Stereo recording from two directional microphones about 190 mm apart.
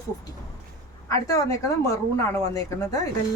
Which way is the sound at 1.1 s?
15° left (ahead or behind).